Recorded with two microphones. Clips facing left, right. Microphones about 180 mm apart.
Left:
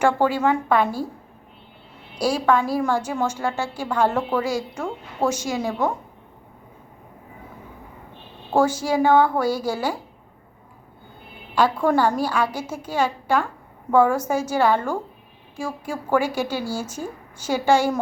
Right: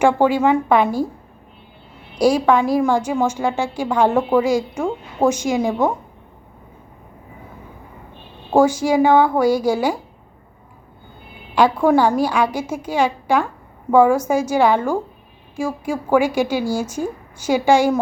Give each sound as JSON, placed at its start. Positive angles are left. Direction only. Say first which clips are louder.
{"t": 0.0, "sound": "a woman's voice", "louder": "right 4 dB", "side_deg": -15}
{"t": 2.1, "sound": "a woman's voice", "louder": "right 5 dB", "side_deg": -15}
{"t": 8.5, "sound": "a woman's voice", "louder": "right 5 dB", "side_deg": -15}
{"t": 11.5, "sound": "a woman's voice", "louder": "right 4 dB", "side_deg": -10}